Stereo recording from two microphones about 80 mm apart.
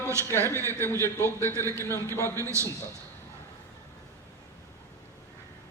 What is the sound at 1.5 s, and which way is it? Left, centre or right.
Speech, right.